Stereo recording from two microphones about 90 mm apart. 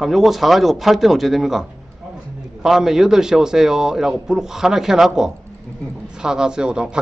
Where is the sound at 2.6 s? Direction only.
5° right (ahead or behind).